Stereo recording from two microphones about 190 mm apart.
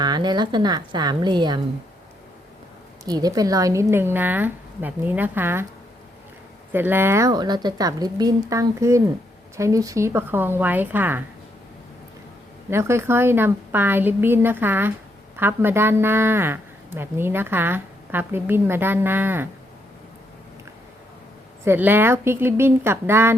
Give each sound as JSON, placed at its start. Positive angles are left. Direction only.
{"t": 0.0, "sound": "a woman's voice", "side_deg": -20}
{"t": 3.0, "sound": "a woman's voice", "side_deg": -20}
{"t": 6.7, "sound": "a woman's voice", "side_deg": -10}
{"t": 12.7, "sound": "a woman's voice", "side_deg": -15}
{"t": 21.6, "sound": "a woman's voice", "side_deg": -10}